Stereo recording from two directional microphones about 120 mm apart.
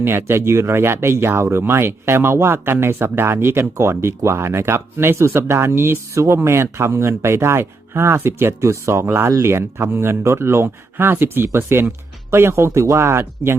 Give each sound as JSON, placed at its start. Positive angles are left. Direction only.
{"t": 0.0, "sound": "speech", "side_deg": -20}